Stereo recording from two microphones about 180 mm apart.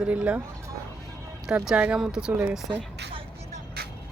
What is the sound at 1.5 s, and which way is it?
Speech, 5° right (ahead or behind).